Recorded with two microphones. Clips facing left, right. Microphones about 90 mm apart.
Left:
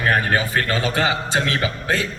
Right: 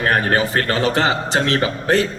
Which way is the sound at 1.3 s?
45° right (ahead or behind).